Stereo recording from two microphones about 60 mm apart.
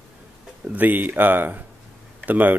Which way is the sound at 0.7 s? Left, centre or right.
Right.